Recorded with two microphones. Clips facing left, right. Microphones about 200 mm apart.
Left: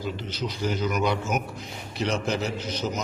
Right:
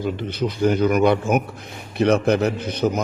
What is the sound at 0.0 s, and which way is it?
A man's voice, 55° right (ahead or behind).